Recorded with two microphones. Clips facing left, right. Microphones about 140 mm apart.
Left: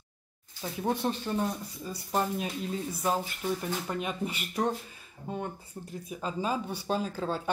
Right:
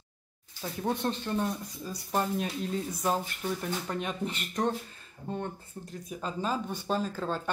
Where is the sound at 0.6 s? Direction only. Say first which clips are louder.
Left 1 dB; 10° left (ahead or behind).